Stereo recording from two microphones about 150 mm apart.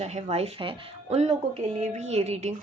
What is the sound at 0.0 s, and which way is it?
Speech, 45° right (ahead or behind).